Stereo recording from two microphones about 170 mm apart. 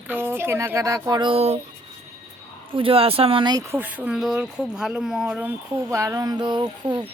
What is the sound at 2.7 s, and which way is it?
Speech, 30° right (ahead or behind).